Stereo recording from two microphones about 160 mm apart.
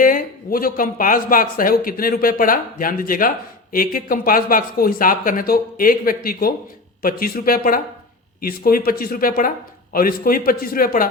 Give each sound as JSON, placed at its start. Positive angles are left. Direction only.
{"t": 0.0, "sound": "speech", "side_deg": 60}